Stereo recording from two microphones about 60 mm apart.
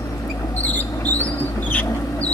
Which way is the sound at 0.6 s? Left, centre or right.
Left.